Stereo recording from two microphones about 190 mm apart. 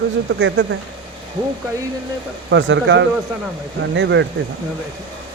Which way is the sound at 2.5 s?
75° right (ahead or behind).